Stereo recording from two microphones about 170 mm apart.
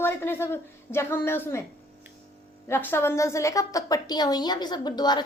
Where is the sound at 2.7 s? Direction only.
10° left (ahead or behind).